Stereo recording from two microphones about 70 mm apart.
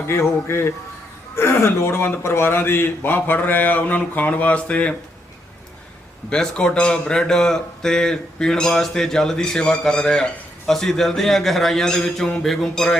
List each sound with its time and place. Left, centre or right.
0.1 s speech: left; by 4.9 s centre
6.3 s a man's voice: centre